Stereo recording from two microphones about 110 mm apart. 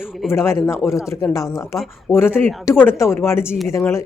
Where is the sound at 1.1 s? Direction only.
30° left (ahead or behind).